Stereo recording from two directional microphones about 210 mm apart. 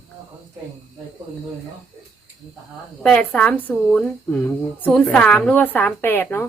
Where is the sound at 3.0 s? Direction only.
5° left (ahead or behind).